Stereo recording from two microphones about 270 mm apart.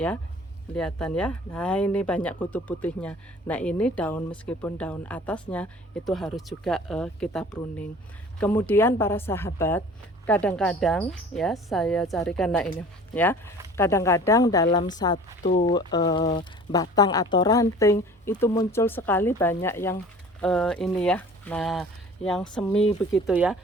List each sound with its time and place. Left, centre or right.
0.7 s speech: centre